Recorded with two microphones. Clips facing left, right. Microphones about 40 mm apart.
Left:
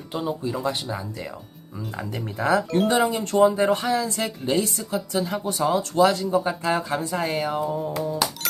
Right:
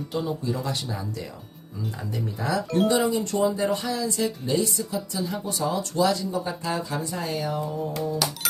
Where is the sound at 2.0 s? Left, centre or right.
Left.